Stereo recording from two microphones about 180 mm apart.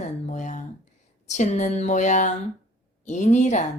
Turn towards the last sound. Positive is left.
turn(degrees=40)  # may be behind; listen again after turning